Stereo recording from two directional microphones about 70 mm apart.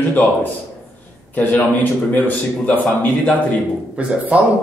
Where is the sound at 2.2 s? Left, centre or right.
Left.